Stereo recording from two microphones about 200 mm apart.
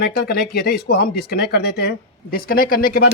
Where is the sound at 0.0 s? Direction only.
50° left (ahead or behind).